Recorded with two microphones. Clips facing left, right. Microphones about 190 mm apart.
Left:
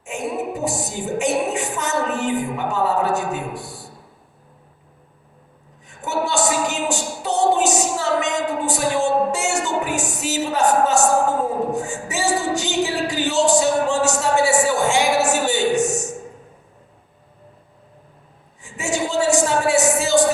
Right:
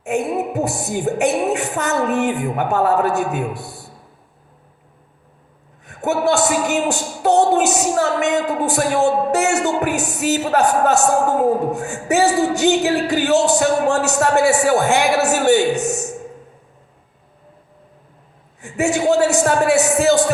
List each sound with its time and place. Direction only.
0.0 s speech: 60° right (ahead or behind)
5.8 s speech: 60° right (ahead or behind)
18.6 s speech: 60° right (ahead or behind)